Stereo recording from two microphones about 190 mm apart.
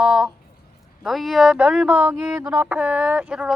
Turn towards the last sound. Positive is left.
turn(degrees=-5)  # may be behind; listen again after turning